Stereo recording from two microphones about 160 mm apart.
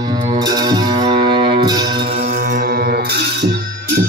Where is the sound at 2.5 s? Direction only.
65° right (ahead or behind); by 3.5 s 80° right.